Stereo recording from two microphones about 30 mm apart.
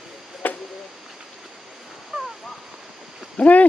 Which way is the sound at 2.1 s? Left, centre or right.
Right.